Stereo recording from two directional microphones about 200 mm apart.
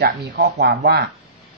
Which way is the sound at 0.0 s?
50° right (ahead or behind).